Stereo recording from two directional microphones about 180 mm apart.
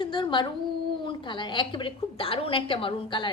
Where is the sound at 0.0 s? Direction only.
25° left (ahead or behind).